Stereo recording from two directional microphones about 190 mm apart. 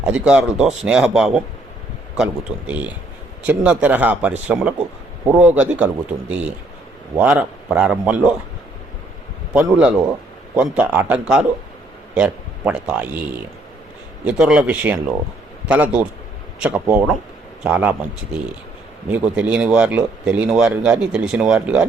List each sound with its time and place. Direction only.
0.0 s speech: 5° right (ahead or behind)
7.2 s speech: 10° right (ahead or behind)
9.5 s a man's voice: 5° right (ahead or behind)
14.3 s speech: 5° right (ahead or behind)
19.0 s speech: 5° right (ahead or behind)